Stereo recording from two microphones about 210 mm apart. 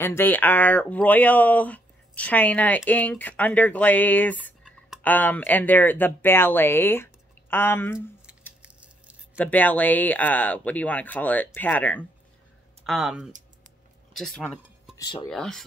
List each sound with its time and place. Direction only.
0.0 s speech: 10° left (ahead or behind)
8.6 s a sound: 5° right (ahead or behind)
9.4 s speech: 10° left (ahead or behind)
14.1 s music: centre (ahead or behind)
15.2 s speech: centre (ahead or behind)